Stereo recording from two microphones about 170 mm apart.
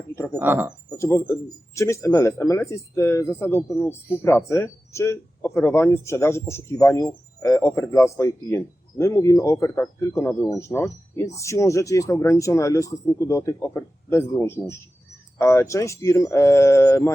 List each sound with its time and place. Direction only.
0.3 s speech: 10° right (ahead or behind)
0.9 s speech: 15° left (ahead or behind)